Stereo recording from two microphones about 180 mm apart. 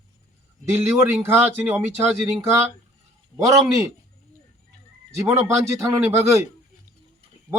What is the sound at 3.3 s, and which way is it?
Speech, 15° right (ahead or behind).